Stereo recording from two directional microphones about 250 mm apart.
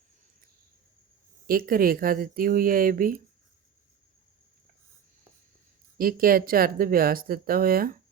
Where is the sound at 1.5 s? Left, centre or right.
Right.